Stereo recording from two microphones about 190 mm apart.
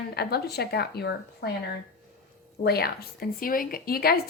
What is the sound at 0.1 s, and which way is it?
A woman's voice, 55° left (ahead or behind).